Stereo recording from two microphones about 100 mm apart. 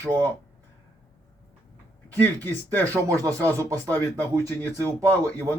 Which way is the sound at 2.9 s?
35° right (ahead or behind).